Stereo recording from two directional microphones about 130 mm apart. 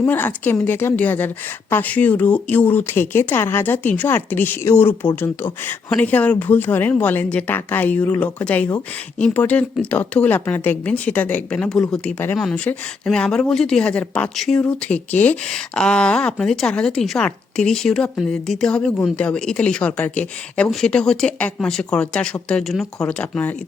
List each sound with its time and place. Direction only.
0.0 s speech: 15° left (ahead or behind)